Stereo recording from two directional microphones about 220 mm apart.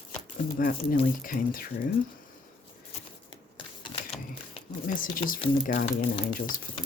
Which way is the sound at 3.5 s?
25° left (ahead or behind).